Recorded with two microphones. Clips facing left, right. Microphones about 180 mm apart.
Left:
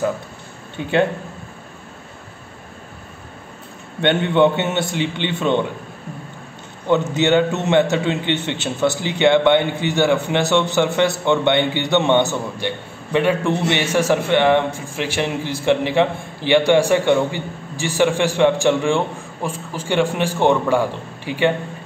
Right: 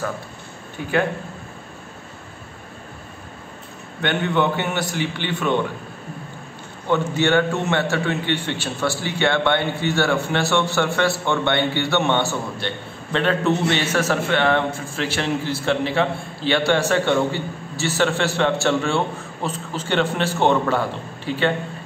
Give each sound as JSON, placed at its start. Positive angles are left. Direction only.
{"t": 0.7, "sound": "a man's voice", "side_deg": 25}
{"t": 4.0, "sound": "a man's voice", "side_deg": 25}
{"t": 6.9, "sound": "a man's voice", "side_deg": 20}